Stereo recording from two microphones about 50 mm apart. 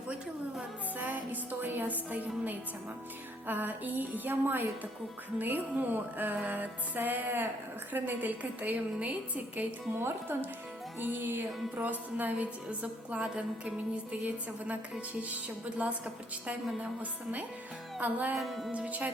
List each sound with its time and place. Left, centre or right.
0.9 s music: right
9.9 s speech: right
11.0 s music: right
16.8 s music: right
18.3 s music: centre
18.7 s music: right